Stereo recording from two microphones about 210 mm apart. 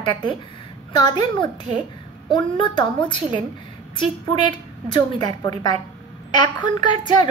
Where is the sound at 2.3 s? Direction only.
25° left (ahead or behind).